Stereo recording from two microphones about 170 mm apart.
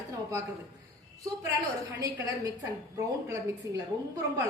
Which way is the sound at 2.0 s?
20° right (ahead or behind).